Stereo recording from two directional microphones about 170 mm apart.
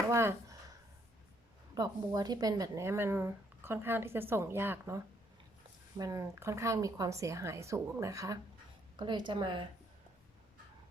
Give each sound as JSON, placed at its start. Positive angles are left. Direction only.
{"t": 0.1, "sound": "speech", "side_deg": -15}
{"t": 1.7, "sound": "speech", "side_deg": -20}